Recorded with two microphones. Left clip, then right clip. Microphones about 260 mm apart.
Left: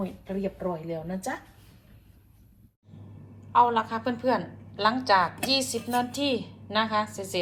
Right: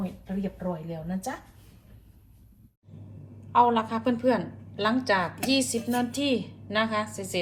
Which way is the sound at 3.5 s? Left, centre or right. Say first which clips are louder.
Even; centre.